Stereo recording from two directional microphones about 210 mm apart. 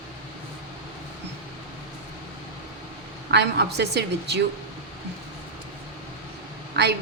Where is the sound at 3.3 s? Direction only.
55° right (ahead or behind).